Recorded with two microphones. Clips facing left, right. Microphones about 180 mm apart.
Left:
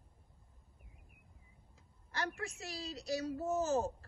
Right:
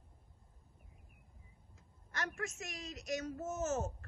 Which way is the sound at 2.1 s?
35° left (ahead or behind).